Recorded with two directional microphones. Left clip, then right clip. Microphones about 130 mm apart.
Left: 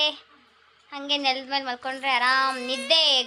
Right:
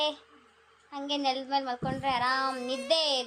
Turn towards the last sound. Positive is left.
turn(degrees=5)  # may be behind; listen again after turning